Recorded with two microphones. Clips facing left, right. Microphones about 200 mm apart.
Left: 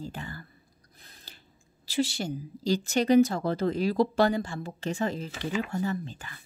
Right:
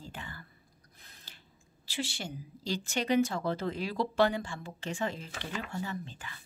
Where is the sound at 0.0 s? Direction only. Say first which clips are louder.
Left 7 dB; 40° left (ahead or behind).